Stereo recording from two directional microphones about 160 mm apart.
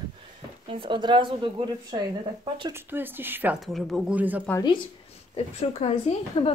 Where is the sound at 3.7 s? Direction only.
Centre (ahead or behind).